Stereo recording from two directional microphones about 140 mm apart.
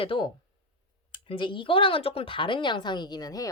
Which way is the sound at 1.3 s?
35° left (ahead or behind).